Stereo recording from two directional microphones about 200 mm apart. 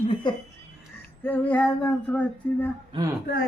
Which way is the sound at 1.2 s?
10° left (ahead or behind).